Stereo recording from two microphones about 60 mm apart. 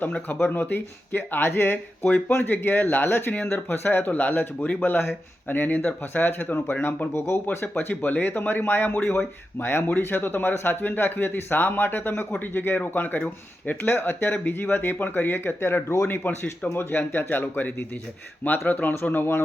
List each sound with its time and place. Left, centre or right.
0.0 s speech: left
2.0 s speech: left
2.3 s speech: left
15.6 s speech: left